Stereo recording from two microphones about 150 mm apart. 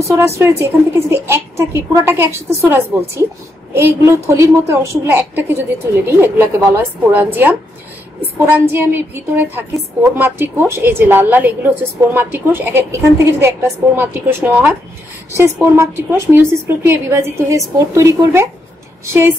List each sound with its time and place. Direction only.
0.0 s a woman's voice: 20° right (ahead or behind)